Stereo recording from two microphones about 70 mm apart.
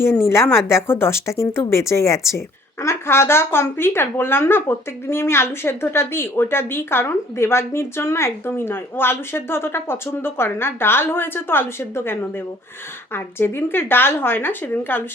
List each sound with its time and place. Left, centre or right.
0.0 s a woman's voice: left
13.1 s a woman's voice: left